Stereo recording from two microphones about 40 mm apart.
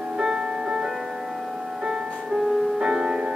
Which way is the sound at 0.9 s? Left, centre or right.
Centre.